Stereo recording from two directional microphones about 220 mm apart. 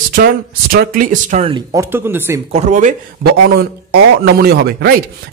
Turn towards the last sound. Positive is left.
turn(degrees=-45)  # may be behind; listen again after turning